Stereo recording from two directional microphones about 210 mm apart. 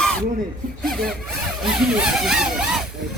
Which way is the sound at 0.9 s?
Centre (ahead or behind).